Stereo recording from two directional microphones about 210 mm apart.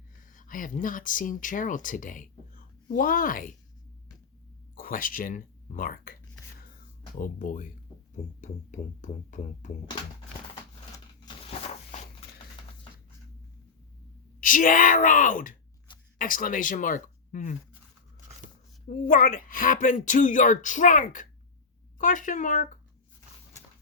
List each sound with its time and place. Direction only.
0.2 s speech: 40° left (ahead or behind)
4.7 s speech: 40° left (ahead or behind)
7.2 s speech: 40° left (ahead or behind)
11.6 s a sound: 35° left (ahead or behind)
14.4 s speech: 40° left (ahead or behind)
18.9 s speech: 40° left (ahead or behind)